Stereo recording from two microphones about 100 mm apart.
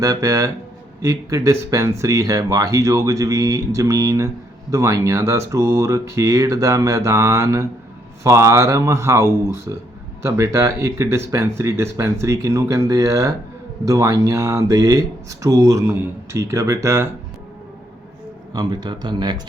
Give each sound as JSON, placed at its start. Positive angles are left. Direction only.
{"t": 0.0, "sound": "speech", "side_deg": -35}
{"t": 18.5, "sound": "speech", "side_deg": -45}